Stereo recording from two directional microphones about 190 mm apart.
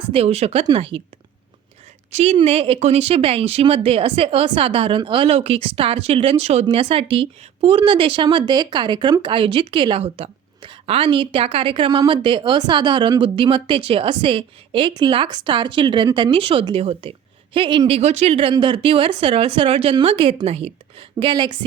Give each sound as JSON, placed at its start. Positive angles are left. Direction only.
{"t": 0.1, "sound": "speech", "side_deg": -30}
{"t": 2.1, "sound": "a woman's voice", "side_deg": -35}